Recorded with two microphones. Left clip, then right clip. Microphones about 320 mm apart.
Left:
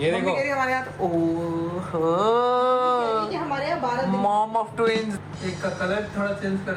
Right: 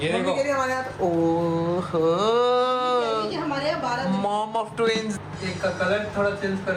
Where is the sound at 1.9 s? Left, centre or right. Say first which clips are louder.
Left 1 dB; centre.